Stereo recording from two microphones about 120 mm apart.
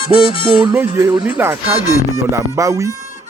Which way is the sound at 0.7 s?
20° right (ahead or behind).